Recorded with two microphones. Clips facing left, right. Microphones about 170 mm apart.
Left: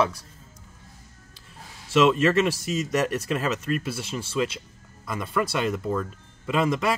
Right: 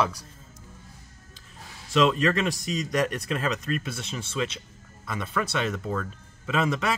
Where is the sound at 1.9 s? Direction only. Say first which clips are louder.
Left 3 dB; 5° left (ahead or behind).